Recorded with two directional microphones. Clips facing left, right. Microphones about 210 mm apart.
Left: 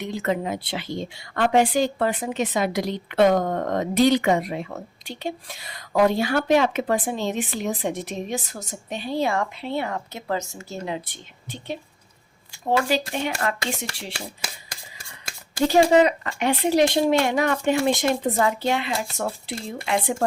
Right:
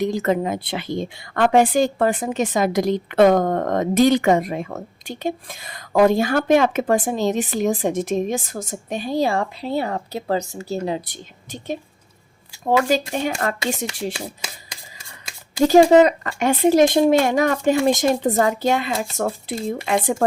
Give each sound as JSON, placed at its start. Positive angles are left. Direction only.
{"t": 0.0, "sound": "speech", "side_deg": -40}
{"t": 12.9, "sound": "speech", "side_deg": -45}
{"t": 15.6, "sound": "speech", "side_deg": -40}